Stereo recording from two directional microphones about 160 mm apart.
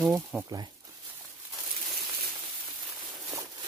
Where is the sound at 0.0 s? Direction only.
Centre (ahead or behind).